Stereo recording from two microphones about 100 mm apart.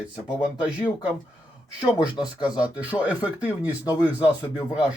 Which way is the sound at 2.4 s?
15° right (ahead or behind).